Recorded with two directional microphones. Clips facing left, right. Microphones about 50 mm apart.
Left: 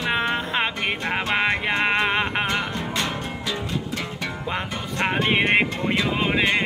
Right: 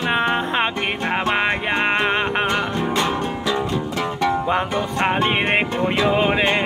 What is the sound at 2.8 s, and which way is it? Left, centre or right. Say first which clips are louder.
Music: right 6 dB; centre.